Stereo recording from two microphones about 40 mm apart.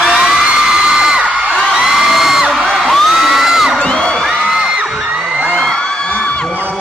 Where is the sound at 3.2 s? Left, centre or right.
Centre.